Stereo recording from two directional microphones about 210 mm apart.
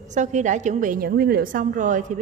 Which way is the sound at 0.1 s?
35° right (ahead or behind).